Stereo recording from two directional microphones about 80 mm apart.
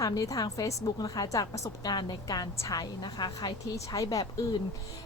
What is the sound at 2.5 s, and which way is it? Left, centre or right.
Speech, left.